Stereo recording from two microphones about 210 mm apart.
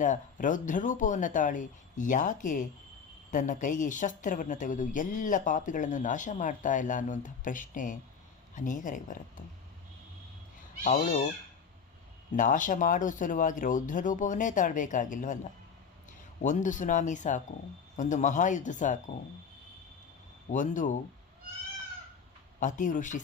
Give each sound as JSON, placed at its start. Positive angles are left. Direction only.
{"t": 0.0, "sound": "a woman's voice", "side_deg": 35}
{"t": 10.8, "sound": "a woman's voice", "side_deg": 35}
{"t": 12.4, "sound": "a woman's voice", "side_deg": 40}
{"t": 16.4, "sound": "a woman's voice", "side_deg": 35}
{"t": 20.5, "sound": "a woman's voice", "side_deg": 35}
{"t": 22.6, "sound": "a woman's voice", "side_deg": 35}